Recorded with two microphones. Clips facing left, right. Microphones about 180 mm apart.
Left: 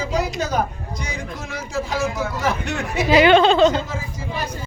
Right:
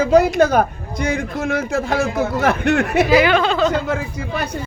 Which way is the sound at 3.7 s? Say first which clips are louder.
Right 4 dB; 65° right (ahead or behind).